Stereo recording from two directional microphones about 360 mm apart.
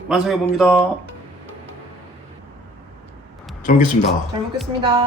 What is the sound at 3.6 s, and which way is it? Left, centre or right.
Speech, left.